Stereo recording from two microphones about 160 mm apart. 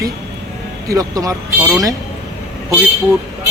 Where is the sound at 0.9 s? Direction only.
20° right (ahead or behind).